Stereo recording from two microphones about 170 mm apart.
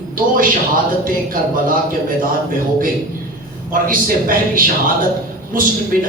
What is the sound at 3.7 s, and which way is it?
Speech, 55° right (ahead or behind).